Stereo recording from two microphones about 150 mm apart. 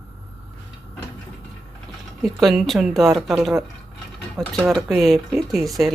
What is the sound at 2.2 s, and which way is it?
Speech, centre (ahead or behind).